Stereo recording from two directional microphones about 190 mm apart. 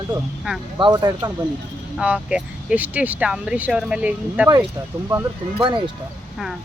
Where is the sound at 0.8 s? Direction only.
20° right (ahead or behind).